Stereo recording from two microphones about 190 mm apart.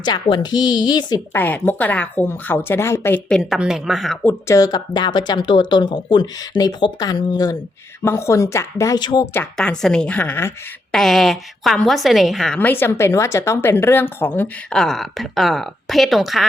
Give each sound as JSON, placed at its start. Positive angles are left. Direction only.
{"t": 0.0, "sound": "a woman's voice", "side_deg": 25}
{"t": 1.4, "sound": "speech", "side_deg": 10}
{"t": 9.3, "sound": "a woman's voice", "side_deg": 5}